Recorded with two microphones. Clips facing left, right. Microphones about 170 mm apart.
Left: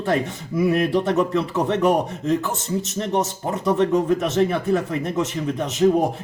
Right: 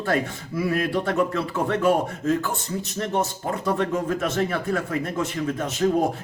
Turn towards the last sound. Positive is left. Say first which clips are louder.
# left 2 dB
turn(degrees=20)  # may be behind; listen again after turning